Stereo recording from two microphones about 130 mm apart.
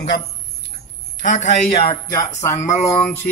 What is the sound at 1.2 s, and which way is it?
Speech, 65° left (ahead or behind).